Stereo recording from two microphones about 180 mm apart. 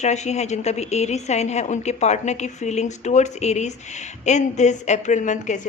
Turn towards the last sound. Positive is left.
turn(degrees=40)  # may be behind; listen again after turning